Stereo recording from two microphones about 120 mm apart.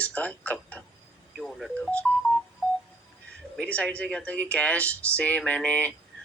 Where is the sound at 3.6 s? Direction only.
10° left (ahead or behind).